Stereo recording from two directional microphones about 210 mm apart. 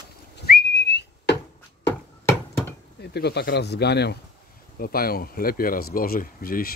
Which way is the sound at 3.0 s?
50° left (ahead or behind).